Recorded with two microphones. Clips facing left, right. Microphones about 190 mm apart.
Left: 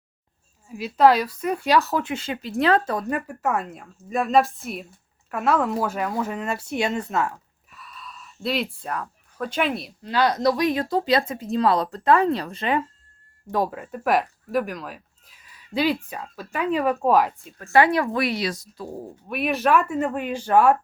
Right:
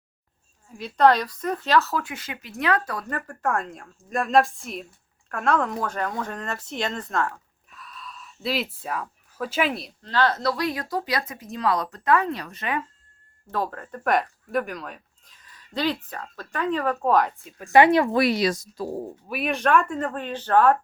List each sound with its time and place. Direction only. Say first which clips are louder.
0.7 s a woman's voice: left 2 dB; 5° left (ahead or behind)
10.0 s speech: left 2 dB; 10° left (ahead or behind); by 12.8 s 30° left (ahead or behind)
13.5 s speech: left 4 dB; 10° left (ahead or behind)
17.6 s speech: right 2 dB; 20° right (ahead or behind)
18.2 s speech: right 3 dB; 40° right (ahead or behind)
19.3 s speech: left 1 dB; centre (ahead or behind)